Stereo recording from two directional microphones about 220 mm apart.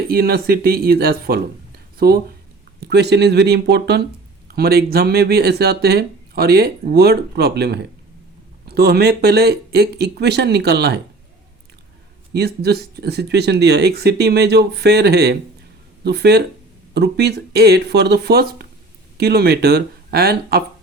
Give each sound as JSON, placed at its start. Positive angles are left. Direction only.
{"t": 0.1, "sound": "speech", "side_deg": -45}
{"t": 12.3, "sound": "speech", "side_deg": -45}